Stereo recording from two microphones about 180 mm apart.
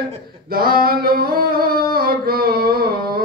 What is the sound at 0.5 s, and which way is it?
Singing, 55° right (ahead or behind).